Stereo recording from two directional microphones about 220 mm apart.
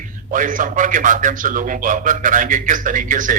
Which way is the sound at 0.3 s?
35° right (ahead or behind).